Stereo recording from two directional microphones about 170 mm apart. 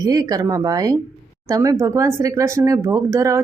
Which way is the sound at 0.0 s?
20° right (ahead or behind).